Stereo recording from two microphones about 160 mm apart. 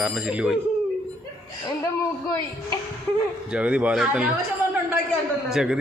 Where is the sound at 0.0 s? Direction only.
5° right (ahead or behind).